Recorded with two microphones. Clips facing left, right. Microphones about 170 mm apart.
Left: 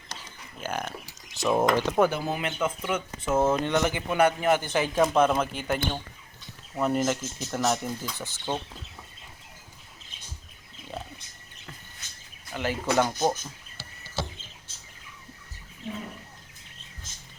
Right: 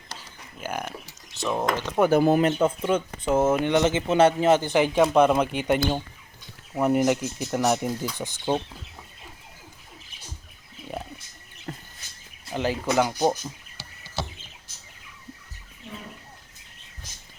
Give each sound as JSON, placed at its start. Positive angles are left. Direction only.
{"t": 0.6, "sound": "speech", "side_deg": -10}
{"t": 1.4, "sound": "speech", "side_deg": 10}
{"t": 2.0, "sound": "speech", "side_deg": -50}
{"t": 3.2, "sound": "a man's voice", "side_deg": -15}
{"t": 4.9, "sound": "speech", "side_deg": 0}
{"t": 6.7, "sound": "speech", "side_deg": -15}
{"t": 10.9, "sound": "roaring cats", "side_deg": -10}
{"t": 11.7, "sound": "bird", "side_deg": -45}
{"t": 12.5, "sound": "speech", "side_deg": -20}
{"t": 12.8, "sound": "speech", "side_deg": -10}